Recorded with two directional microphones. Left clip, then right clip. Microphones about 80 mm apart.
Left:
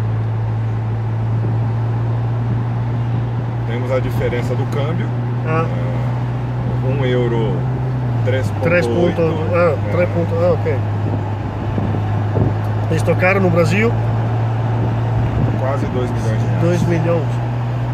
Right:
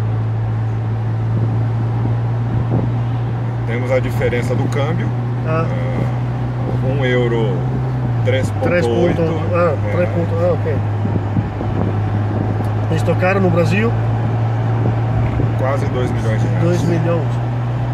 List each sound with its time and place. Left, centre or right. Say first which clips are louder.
3.9 s speech: right 2 dB; centre
7.0 s speech: right 1 dB; centre
8.6 s speech: even; left
12.9 s speech: left 2 dB; left
16.6 s speech: left 1 dB; left